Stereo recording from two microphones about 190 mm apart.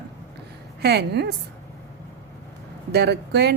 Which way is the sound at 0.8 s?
60° right (ahead or behind).